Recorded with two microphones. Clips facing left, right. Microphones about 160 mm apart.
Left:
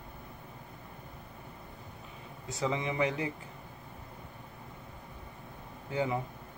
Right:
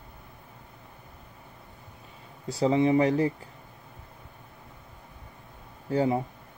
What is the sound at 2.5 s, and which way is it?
Speech, 35° right (ahead or behind).